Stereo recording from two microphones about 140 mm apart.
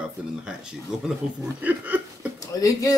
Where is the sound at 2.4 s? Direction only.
25° left (ahead or behind).